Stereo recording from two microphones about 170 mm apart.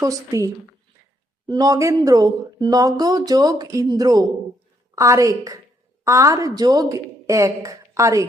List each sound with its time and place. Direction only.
0.0 s a woman's voice: 20° right (ahead or behind)